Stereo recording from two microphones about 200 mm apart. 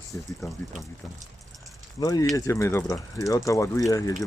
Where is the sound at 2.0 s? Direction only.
15° left (ahead or behind).